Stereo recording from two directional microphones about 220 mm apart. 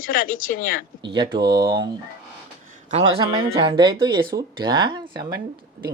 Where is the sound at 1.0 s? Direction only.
20° right (ahead or behind).